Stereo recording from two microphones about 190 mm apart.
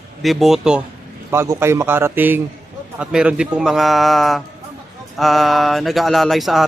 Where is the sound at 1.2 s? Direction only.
15° right (ahead or behind).